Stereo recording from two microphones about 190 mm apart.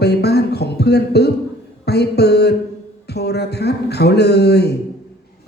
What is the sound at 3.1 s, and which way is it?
A man's voice, 60° left (ahead or behind).